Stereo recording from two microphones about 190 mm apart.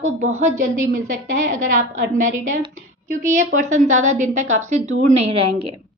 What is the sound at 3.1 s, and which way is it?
A woman's voice, 40° right (ahead or behind).